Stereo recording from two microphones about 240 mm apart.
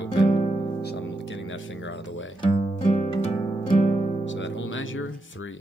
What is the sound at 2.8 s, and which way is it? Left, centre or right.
Music, left.